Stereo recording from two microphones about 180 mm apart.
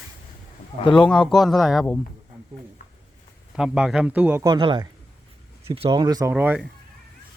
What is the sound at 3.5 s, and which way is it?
Speech, 5° right (ahead or behind).